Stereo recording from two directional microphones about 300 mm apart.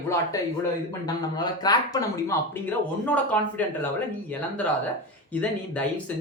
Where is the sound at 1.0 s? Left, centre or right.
Centre.